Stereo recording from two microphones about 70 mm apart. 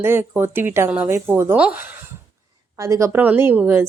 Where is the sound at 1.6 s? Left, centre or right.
Centre.